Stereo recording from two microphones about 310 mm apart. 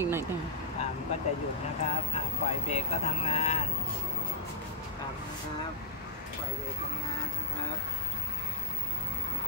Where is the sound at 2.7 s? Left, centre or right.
Left.